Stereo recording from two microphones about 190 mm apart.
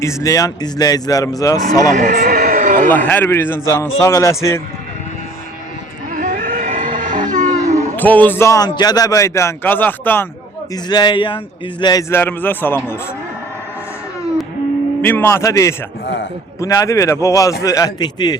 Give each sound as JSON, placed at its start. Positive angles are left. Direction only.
{"t": 0.0, "sound": "speech", "side_deg": 15}
{"t": 1.9, "sound": "a sound", "side_deg": -45}
{"t": 2.9, "sound": "a man's voice", "side_deg": 10}
{"t": 6.1, "sound": "livestock", "side_deg": -45}
{"t": 7.9, "sound": "a man's voice", "side_deg": 10}
{"t": 10.8, "sound": "a man's voice", "side_deg": 20}
{"t": 15.0, "sound": "a man's voice", "side_deg": 10}